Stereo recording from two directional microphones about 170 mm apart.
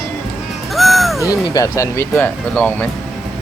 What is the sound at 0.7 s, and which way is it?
Music, centre (ahead or behind).